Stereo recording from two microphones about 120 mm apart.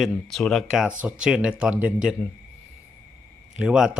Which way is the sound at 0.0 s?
5° left (ahead or behind).